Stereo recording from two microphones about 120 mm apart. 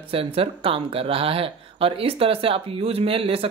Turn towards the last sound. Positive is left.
turn(degrees=-50)  # may be behind; listen again after turning